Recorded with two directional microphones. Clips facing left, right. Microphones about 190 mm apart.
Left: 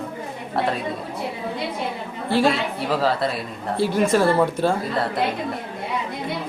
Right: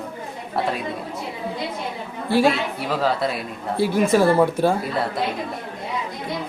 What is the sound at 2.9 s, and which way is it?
Speech, centre (ahead or behind).